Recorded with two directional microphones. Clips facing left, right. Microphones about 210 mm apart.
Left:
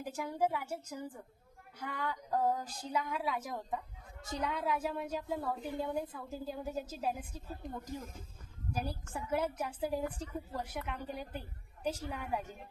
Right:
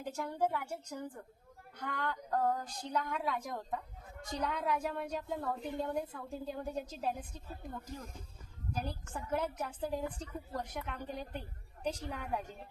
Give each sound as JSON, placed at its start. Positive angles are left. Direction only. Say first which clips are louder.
{"t": 0.0, "sound": "a woman's voice", "louder": "left 1 dB", "side_deg": 10}
{"t": 8.7, "sound": "a woman's voice", "louder": "left 1 dB", "side_deg": 10}